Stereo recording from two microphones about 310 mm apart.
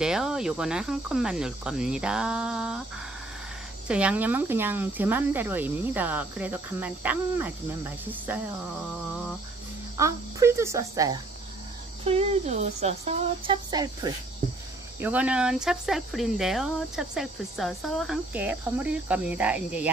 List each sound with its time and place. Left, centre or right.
0.0 s speech: centre
3.8 s speech: centre
9.9 s speech: centre